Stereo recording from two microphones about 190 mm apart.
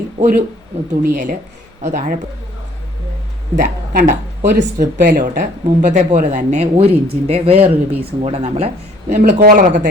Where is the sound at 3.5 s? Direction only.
45° right (ahead or behind).